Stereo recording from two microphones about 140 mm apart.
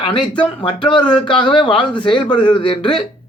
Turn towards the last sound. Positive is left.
turn(degrees=35)  # may be behind; listen again after turning